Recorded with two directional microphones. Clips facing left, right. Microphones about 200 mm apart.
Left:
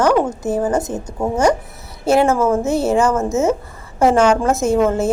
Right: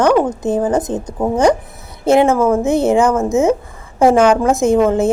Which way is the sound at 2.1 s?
15° right (ahead or behind).